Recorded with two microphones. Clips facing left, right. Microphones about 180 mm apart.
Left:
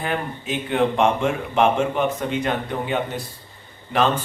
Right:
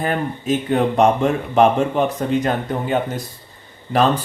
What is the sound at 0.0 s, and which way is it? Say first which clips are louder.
Speech: right 4 dB; 45° right (ahead or behind).